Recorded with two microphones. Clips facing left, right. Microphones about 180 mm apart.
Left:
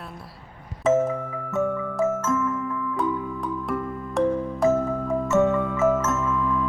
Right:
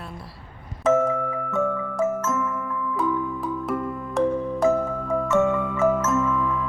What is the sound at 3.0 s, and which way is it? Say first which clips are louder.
Music: right 2 dB; centre (ahead or behind).